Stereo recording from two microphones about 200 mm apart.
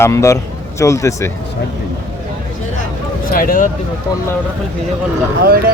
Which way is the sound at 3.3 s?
45° left (ahead or behind).